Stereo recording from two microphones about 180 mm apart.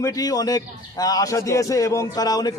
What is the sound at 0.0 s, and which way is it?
A man's voice, 20° left (ahead or behind).